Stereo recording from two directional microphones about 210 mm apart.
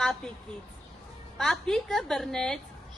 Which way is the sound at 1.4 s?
Centre (ahead or behind).